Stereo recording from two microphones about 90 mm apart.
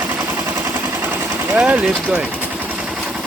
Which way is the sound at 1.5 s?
15° right (ahead or behind).